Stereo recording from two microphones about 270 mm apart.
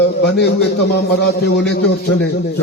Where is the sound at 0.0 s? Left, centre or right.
Left.